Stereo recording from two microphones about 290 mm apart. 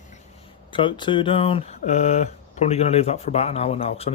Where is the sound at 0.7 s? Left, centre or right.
Centre.